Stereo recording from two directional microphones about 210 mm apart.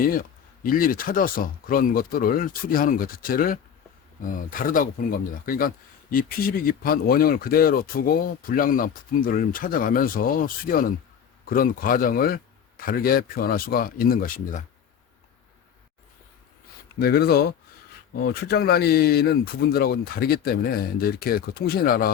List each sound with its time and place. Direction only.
0.0 s speech: 40° left (ahead or behind)
17.0 s speech: 50° left (ahead or behind)